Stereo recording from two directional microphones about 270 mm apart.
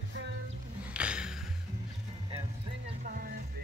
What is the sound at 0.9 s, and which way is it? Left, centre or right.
Music, centre.